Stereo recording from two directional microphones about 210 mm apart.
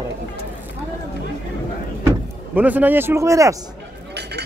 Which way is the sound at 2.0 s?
10° right (ahead or behind).